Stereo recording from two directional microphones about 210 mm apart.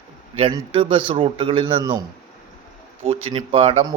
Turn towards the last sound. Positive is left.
turn(degrees=-30)  # may be behind; listen again after turning